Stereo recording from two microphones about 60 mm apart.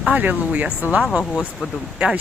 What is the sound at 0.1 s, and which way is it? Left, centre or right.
Speech, right.